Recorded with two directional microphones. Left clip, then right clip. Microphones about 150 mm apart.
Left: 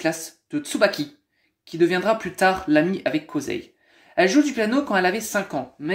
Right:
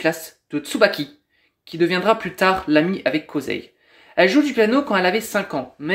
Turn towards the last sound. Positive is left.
turn(degrees=-10)  # may be behind; listen again after turning